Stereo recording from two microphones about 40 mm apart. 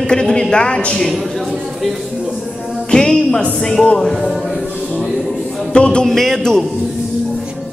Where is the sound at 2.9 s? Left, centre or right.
Centre.